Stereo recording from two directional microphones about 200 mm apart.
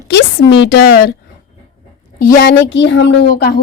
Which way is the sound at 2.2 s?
45° left (ahead or behind).